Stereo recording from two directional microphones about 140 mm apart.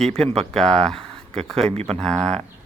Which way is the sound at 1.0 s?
50° right (ahead or behind).